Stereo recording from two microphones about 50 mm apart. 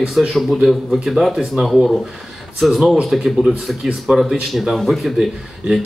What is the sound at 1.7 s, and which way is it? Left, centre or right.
Speech, centre.